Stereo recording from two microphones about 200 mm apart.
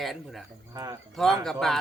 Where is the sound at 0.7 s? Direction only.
20° right (ahead or behind).